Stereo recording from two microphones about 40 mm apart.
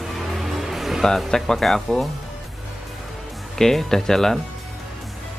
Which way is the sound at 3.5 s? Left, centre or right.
Centre.